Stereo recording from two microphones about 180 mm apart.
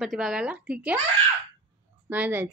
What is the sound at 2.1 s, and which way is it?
Speech, 10° right (ahead or behind).